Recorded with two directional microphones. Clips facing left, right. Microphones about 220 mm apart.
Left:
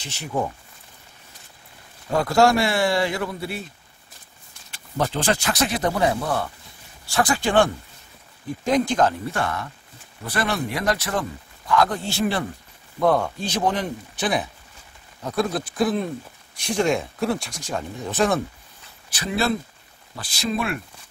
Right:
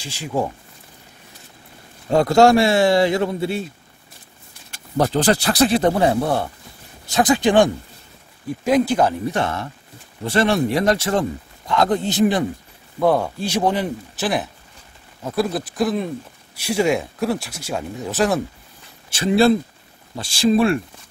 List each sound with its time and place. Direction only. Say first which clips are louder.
2.0 s speech: right 5 dB; 25° right (ahead or behind)
4.6 s speech: right 5 dB; 40° right (ahead or behind); by 9.1 s 10° right (ahead or behind)
9.3 s speech: right 4 dB; 25° right (ahead or behind)
13.0 s speech: right 2 dB; 5° right (ahead or behind)
19.0 s speech: right 9 dB; 25° right (ahead or behind)